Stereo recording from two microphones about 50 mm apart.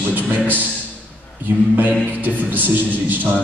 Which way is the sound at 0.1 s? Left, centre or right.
Right.